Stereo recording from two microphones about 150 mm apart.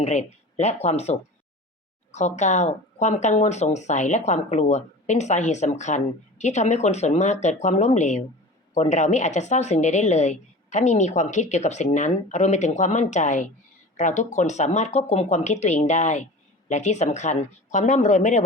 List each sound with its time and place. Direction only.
0.0 s a woman's voice: 50° left (ahead or behind)